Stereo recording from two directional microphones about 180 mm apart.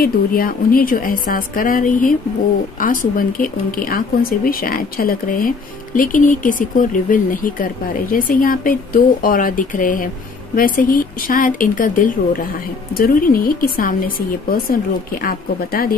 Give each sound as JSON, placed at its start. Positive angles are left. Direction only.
{"t": 0.0, "sound": "speech", "side_deg": 55}